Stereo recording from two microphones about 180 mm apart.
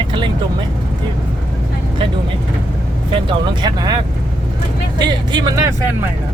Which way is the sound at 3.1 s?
25° right (ahead or behind).